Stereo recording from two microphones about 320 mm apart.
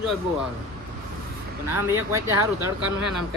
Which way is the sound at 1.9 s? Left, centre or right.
Centre.